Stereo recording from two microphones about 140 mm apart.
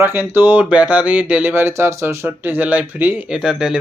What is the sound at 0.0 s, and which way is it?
A man's voice, 15° right (ahead or behind).